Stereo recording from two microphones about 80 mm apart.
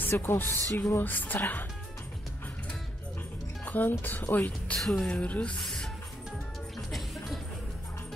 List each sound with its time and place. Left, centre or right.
0.1 s speech: left
3.6 s music: left
4.0 s speech: left
4.7 s speech: centre
5.6 s music: centre